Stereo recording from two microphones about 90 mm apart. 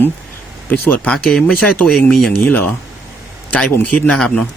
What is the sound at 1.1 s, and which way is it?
Speech, 5° left (ahead or behind).